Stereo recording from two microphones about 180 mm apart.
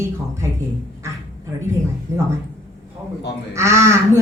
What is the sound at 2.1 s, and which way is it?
Speech, 15° right (ahead or behind).